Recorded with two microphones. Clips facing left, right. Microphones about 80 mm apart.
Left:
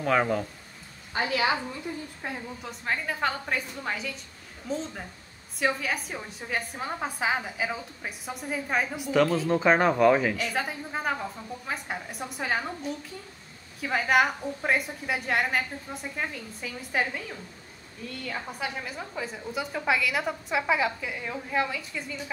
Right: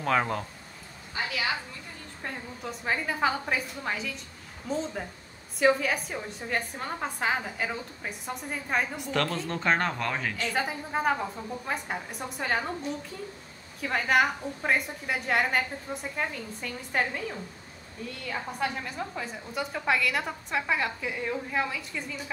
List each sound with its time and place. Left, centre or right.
0.0 s a woman's voice: centre
2.2 s a woman's voice: centre
18.2 s a woman's voice: centre